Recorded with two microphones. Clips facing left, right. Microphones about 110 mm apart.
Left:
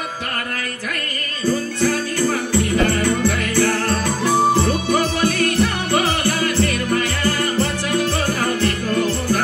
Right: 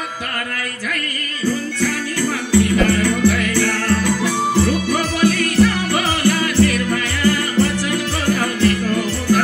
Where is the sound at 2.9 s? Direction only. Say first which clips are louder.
Right 2 dB; 25° left (ahead or behind).